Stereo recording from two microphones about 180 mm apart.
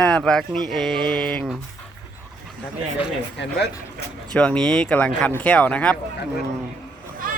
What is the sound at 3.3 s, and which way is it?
Speech, 70° left (ahead or behind).